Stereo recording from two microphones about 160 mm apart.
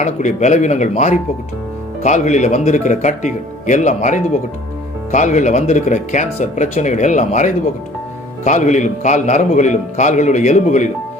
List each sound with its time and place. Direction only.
0.0 s speech: 50° left (ahead or behind)